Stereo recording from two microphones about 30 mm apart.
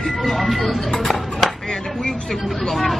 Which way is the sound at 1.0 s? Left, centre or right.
Centre.